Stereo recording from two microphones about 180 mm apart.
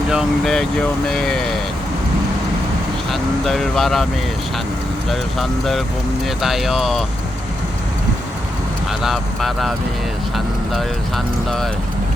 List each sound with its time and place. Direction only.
0.1 s speech: centre (ahead or behind)
3.1 s speech: centre (ahead or behind)
5.4 s speech: centre (ahead or behind)
9.0 s speech: centre (ahead or behind)